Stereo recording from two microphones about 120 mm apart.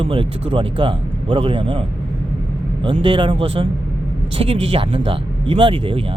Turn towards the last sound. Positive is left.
turn(degrees=-45)  # may be behind; listen again after turning